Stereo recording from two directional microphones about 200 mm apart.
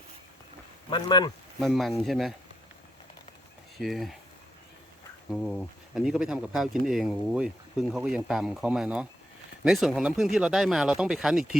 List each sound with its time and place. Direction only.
0.9 s speech: 25° left (ahead or behind)
1.5 s speech: centre (ahead or behind)
3.8 s speech: centre (ahead or behind)
5.3 s speech: centre (ahead or behind)